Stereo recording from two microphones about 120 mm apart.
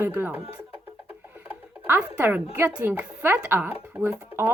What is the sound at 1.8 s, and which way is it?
Speech, 20° right (ahead or behind).